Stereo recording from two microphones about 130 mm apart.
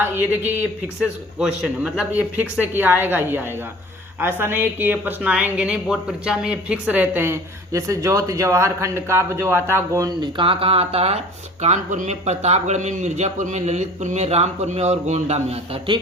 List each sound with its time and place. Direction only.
0.0 s a woman's voice: 15° right (ahead or behind)
10.2 s speech: 40° right (ahead or behind)
11.6 s a man's voice: 65° right (ahead or behind); by 16.0 s 50° right (ahead or behind)